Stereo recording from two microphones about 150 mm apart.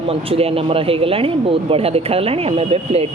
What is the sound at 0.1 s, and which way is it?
Speech, 40° right (ahead or behind).